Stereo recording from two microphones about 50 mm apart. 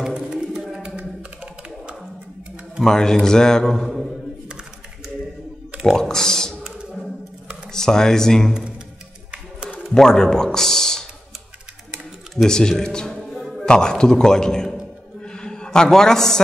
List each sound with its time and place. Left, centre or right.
0.1 s a sound: centre
2.8 s a man's voice: centre
3.8 s a sound: centre
5.9 s speech: centre
6.8 s music: centre
7.7 s speech: centre
9.9 s a man's voice: centre
12.4 s a man's voice: centre
13.2 s music: centre
13.7 s a man's voice: centre
15.2 s a sound: centre